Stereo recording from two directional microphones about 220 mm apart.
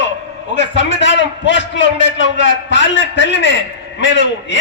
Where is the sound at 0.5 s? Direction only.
55° left (ahead or behind).